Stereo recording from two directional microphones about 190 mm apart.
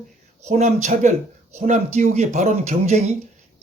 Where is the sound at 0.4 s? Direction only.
35° right (ahead or behind).